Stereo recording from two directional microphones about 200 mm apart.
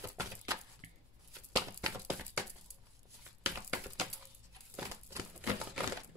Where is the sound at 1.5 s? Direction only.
15° right (ahead or behind).